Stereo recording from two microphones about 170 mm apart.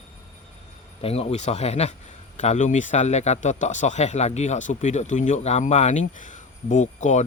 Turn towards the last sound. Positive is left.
turn(degrees=45)  # may be behind; listen again after turning